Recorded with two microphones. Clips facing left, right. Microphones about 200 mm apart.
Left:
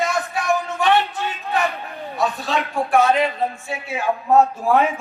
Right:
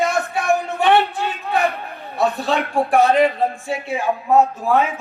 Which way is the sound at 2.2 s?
60° right (ahead or behind).